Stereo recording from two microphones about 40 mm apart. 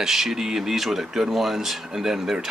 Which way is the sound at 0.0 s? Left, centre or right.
Centre.